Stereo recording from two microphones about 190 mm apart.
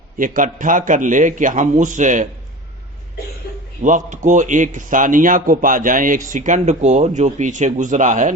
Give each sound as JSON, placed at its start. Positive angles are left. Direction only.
{"t": 0.2, "sound": "a man's voice", "side_deg": -45}
{"t": 3.8, "sound": "a man's voice", "side_deg": -40}